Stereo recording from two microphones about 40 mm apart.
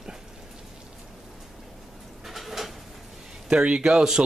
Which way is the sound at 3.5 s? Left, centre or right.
Right.